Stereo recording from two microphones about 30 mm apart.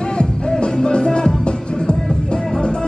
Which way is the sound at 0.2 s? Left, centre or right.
Left.